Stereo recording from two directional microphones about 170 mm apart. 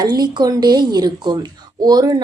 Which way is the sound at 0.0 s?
25° right (ahead or behind).